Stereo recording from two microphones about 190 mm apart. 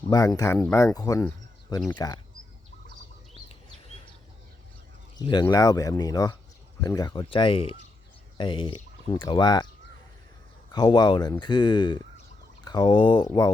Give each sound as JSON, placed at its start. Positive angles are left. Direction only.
{"t": 0.1, "sound": "speech", "side_deg": 20}
{"t": 5.2, "sound": "speech", "side_deg": 20}
{"t": 10.7, "sound": "speech", "side_deg": 20}